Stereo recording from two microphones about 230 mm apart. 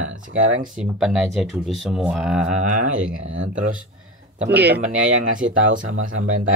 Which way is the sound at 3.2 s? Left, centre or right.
Right.